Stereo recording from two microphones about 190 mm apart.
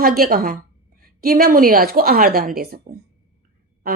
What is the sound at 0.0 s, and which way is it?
Speech, 50° right (ahead or behind).